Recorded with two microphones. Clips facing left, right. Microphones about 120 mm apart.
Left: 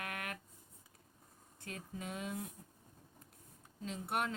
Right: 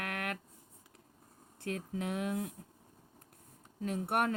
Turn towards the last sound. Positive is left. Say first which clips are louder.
# right 6 dB
turn(degrees=-55)  # may be behind; listen again after turning